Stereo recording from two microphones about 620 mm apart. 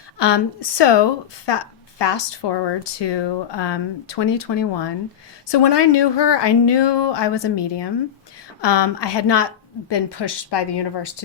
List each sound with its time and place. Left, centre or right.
0.2 s a woman's voice: left